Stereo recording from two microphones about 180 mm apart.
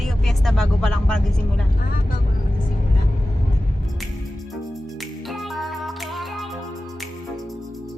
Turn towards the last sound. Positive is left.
turn(degrees=0)  # may be behind; listen again after turning